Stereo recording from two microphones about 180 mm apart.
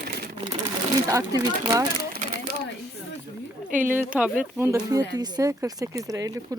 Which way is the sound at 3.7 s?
10° right (ahead or behind).